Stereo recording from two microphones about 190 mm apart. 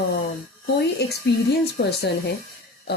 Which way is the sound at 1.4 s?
60° left (ahead or behind).